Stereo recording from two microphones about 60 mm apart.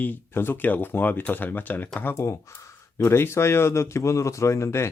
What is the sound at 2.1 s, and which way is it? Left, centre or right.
Speech, left.